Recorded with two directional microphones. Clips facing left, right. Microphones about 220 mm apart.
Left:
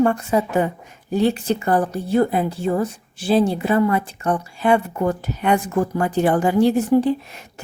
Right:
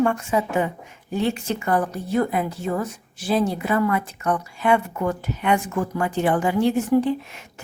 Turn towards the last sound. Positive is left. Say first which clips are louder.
# left 2 dB
turn(degrees=35)  # may be behind; listen again after turning